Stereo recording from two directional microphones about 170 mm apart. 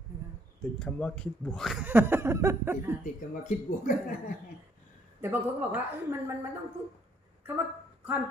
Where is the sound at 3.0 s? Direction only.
50° left (ahead or behind).